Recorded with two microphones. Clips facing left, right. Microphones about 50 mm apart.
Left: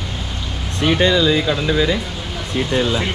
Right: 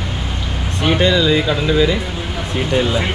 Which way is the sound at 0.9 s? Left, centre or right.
Centre.